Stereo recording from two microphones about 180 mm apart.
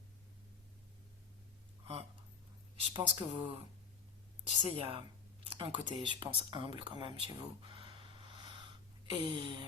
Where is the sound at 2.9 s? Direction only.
30° right (ahead or behind).